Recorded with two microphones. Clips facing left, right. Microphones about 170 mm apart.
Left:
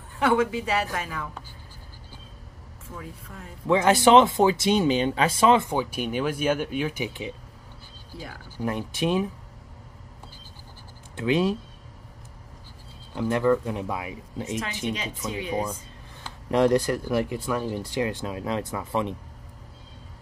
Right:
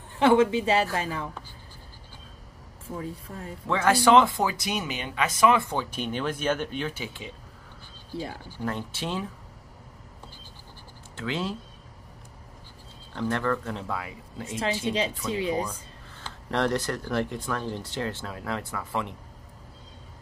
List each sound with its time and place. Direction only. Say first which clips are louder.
0.2 s a woman's voice: right 3 dB; 25° right (ahead or behind)
2.9 s speech: right 5 dB; 30° right (ahead or behind)
3.6 s speech: left 3 dB; 20° left (ahead or behind)
5.7 s speech: left 3 dB; 10° left (ahead or behind)
8.1 s a woman's voice: right 6 dB; 25° right (ahead or behind)
8.5 s speech: left 3 dB; 15° left (ahead or behind)
11.1 s speech: left 8 dB; 15° left (ahead or behind)
13.1 s speech: left 5 dB; 10° left (ahead or behind)
14.9 s speech: right 3 dB; 30° right (ahead or behind)
15.5 s speech: left 1 dB; 30° left (ahead or behind)
16.3 s speech: left 6 dB; 10° left (ahead or behind)